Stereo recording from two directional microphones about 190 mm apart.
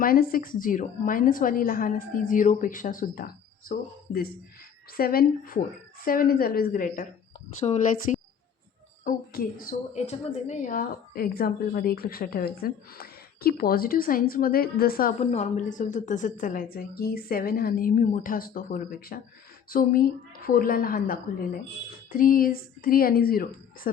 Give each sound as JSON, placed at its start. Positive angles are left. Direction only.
{"t": 0.0, "sound": "a woman's voice", "side_deg": 50}
{"t": 7.6, "sound": "a woman's voice", "side_deg": 25}
{"t": 8.1, "sound": "a sound", "side_deg": 35}
{"t": 9.0, "sound": "a woman's voice", "side_deg": 45}
{"t": 15.2, "sound": "a woman's voice", "side_deg": 35}